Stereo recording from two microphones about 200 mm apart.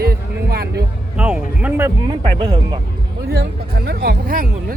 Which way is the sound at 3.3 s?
55° right (ahead or behind).